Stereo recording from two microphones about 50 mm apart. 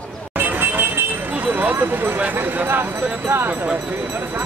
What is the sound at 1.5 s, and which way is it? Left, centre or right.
Speech, right.